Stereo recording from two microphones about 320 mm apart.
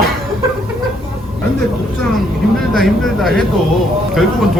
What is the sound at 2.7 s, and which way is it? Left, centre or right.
Speech, centre.